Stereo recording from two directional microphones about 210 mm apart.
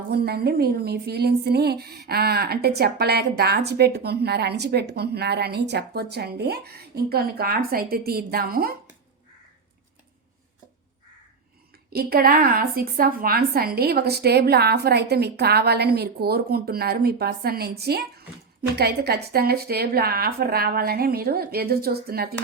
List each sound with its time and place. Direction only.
0.1 s a woman's voice: 50° right (ahead or behind)
11.9 s a woman's voice: 45° right (ahead or behind)